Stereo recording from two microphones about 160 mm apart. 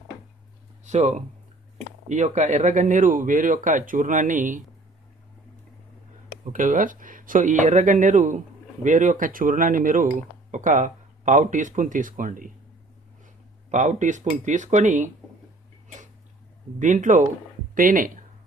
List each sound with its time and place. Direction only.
0.9 s speech: 45° right (ahead or behind)
6.5 s speech: 55° right (ahead or behind)
16.8 s speech: 50° right (ahead or behind)